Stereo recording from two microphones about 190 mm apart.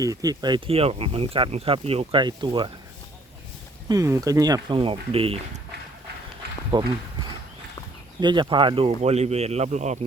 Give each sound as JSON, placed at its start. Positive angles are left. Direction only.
{"t": 0.0, "sound": "speech", "side_deg": -20}
{"t": 3.8, "sound": "speech", "side_deg": -20}
{"t": 6.4, "sound": "a sound", "side_deg": -55}
{"t": 8.2, "sound": "speech", "side_deg": -25}